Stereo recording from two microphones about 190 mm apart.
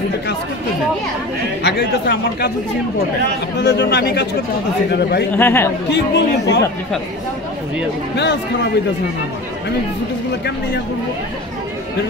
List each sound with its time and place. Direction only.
1.6 s speech: 60° left (ahead or behind)
3.5 s speech: 65° left (ahead or behind)
5.3 s speech: 10° left (ahead or behind)
5.9 s speech: 65° left (ahead or behind)